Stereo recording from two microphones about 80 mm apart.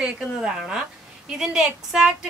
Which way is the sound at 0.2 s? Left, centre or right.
Centre.